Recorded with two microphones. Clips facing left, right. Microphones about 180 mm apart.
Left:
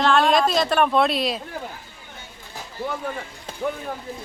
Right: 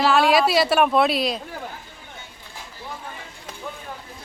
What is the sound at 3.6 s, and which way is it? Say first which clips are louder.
Speech: left 10 dB; 55° left (ahead or behind).